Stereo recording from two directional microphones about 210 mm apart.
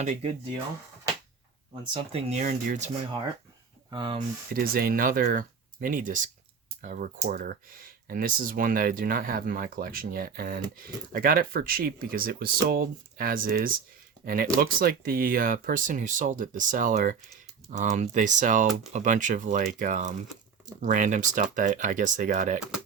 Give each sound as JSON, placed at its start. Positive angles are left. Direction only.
{"t": 0.0, "sound": "speech", "side_deg": -30}
{"t": 1.8, "sound": "speech", "side_deg": -25}
{"t": 3.8, "sound": "speech", "side_deg": -20}
{"t": 4.5, "sound": "speech", "side_deg": -45}